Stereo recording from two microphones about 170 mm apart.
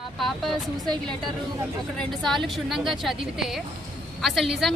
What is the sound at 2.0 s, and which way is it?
Speech, centre (ahead or behind).